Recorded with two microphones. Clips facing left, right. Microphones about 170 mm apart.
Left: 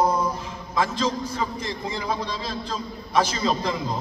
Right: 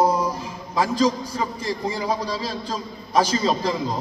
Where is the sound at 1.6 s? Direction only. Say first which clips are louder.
Right 4 dB; 35° right (ahead or behind).